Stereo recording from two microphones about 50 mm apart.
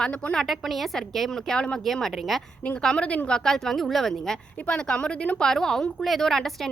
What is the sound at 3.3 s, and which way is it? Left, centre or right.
Speech, centre.